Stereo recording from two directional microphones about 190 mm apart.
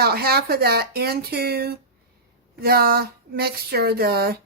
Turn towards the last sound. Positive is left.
turn(degrees=-55)  # may be behind; listen again after turning